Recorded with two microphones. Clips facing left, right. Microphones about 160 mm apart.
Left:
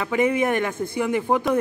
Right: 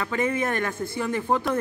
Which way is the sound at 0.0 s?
15° left (ahead or behind).